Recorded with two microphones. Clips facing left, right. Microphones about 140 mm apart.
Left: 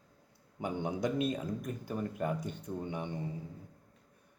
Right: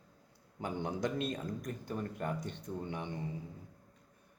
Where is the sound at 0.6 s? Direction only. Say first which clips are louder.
Left 2 dB; 15° left (ahead or behind).